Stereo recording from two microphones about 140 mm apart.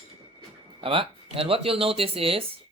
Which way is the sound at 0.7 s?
40° right (ahead or behind).